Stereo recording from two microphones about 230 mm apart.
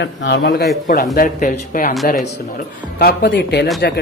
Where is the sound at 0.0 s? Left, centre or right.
Left.